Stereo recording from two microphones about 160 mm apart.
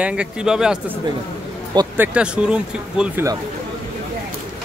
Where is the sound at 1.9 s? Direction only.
10° right (ahead or behind).